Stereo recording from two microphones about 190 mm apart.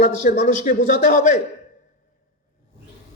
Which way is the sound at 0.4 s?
45° left (ahead or behind).